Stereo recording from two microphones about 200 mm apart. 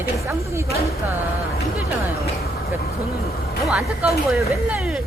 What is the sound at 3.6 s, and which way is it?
Speech, 5° right (ahead or behind).